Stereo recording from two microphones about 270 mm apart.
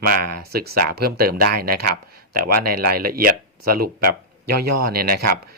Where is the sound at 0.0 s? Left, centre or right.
Right.